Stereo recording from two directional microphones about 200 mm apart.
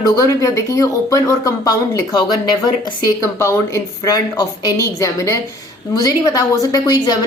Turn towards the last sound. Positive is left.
turn(degrees=20)  # may be behind; listen again after turning